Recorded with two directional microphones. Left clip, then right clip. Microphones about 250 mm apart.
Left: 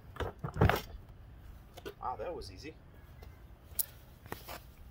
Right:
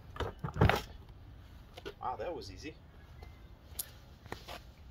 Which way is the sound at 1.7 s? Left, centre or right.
Centre.